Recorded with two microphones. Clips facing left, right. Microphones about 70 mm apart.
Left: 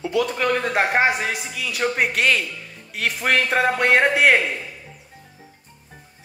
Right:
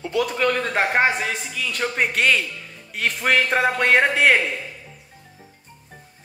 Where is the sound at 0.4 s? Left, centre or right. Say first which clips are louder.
Right 1 dB; centre.